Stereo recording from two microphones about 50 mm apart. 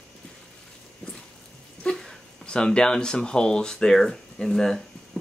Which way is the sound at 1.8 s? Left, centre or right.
Centre.